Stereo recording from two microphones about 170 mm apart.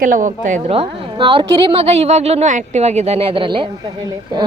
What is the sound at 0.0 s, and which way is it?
Speech, 50° right (ahead or behind).